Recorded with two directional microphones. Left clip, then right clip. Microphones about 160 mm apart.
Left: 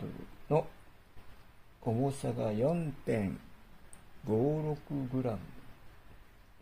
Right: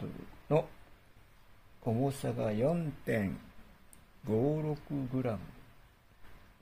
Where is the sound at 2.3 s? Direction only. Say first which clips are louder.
Even; 15° left (ahead or behind).